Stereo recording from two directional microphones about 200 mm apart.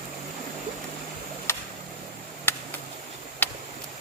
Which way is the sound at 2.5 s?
10° left (ahead or behind).